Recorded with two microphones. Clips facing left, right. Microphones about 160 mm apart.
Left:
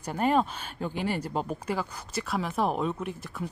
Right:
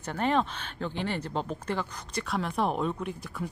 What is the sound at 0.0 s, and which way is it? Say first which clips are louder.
Speech: left 2 dB; 10° left (ahead or behind).